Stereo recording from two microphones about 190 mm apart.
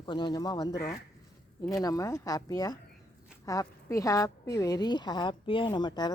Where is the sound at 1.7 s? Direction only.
20° left (ahead or behind).